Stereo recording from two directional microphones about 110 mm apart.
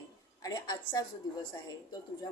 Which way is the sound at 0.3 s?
35° left (ahead or behind).